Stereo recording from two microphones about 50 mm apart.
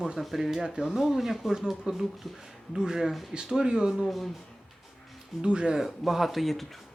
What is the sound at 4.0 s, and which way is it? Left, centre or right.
Speech, centre.